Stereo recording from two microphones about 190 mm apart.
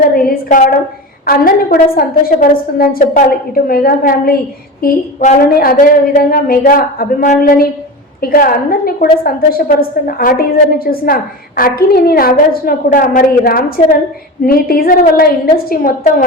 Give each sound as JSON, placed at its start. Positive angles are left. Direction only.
{"t": 0.1, "sound": "a woman's voice", "side_deg": 50}